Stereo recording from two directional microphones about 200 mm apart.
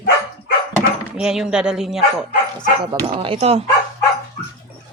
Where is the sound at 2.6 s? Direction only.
25° right (ahead or behind).